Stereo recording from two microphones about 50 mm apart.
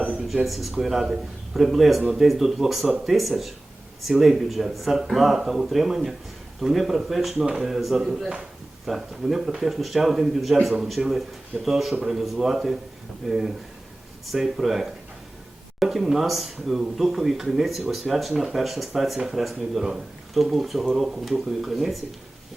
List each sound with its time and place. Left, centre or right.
0.4 s speech: centre